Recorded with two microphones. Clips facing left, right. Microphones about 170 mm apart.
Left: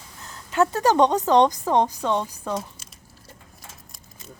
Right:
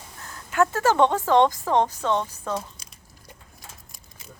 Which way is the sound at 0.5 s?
20° left (ahead or behind).